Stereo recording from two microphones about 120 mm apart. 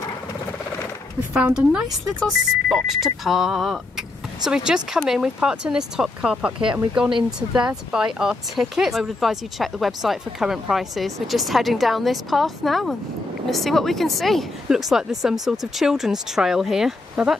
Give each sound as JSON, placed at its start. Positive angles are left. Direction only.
{"t": 1.3, "sound": "speech", "side_deg": -10}
{"t": 6.6, "sound": "speech", "side_deg": -40}
{"t": 7.2, "sound": "speech", "side_deg": -5}